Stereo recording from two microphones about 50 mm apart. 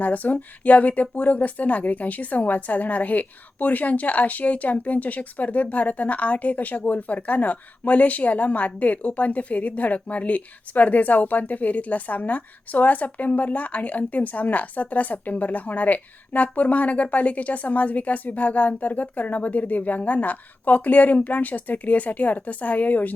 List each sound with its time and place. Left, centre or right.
0.0 s a woman's voice: left